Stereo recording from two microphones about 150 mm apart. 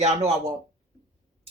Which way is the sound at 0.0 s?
45° right (ahead or behind).